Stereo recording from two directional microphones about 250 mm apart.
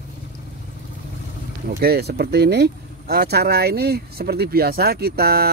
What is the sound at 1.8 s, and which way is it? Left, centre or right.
Speech, right.